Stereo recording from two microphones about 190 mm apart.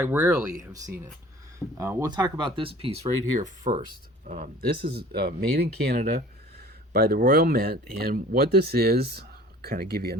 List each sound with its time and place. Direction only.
0.0 s speech: 15° right (ahead or behind)
1.5 s speech: 15° right (ahead or behind); by 3.8 s 40° right (ahead or behind)
4.7 s speech: 55° right (ahead or behind)